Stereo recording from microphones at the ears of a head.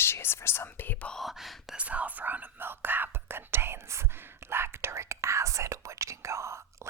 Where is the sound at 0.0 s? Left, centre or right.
Left.